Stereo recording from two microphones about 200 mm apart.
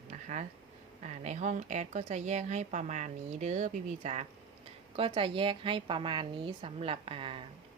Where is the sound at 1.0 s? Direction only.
35° right (ahead or behind).